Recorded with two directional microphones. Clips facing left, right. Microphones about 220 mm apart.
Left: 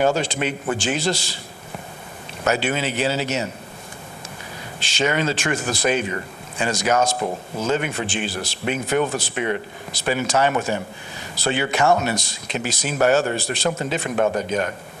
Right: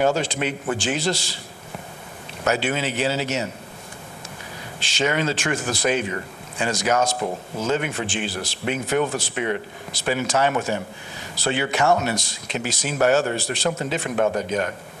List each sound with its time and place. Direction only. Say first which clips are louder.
0.0 s a man's voice: left 1 dB; 15° left (ahead or behind)
2.4 s a man's voice: left 1 dB; 15° left (ahead or behind)
4.8 s a man's voice: left 1 dB; 15° left (ahead or behind)
7.2 s a man's voice: left 1 dB; 25° left (ahead or behind)